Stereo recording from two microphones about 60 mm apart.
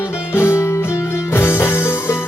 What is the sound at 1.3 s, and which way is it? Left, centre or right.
Music, left.